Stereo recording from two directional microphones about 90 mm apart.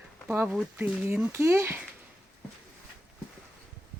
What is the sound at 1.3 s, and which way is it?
Speech, 30° right (ahead or behind).